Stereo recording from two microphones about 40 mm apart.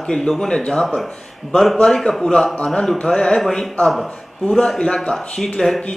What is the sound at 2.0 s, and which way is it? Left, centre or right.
A man's voice, centre.